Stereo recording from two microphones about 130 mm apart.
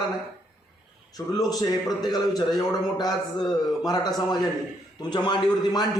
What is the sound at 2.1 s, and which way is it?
A man's voice, 30° left (ahead or behind).